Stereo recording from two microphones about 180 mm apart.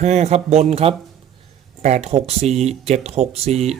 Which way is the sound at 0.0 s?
40° right (ahead or behind).